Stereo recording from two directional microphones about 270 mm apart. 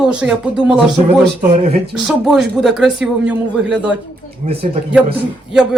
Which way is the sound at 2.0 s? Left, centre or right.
Centre.